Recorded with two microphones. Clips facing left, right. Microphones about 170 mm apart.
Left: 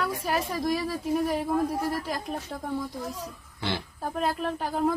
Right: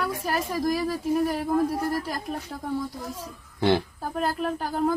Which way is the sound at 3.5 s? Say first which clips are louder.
Right 10 dB; 50° right (ahead or behind).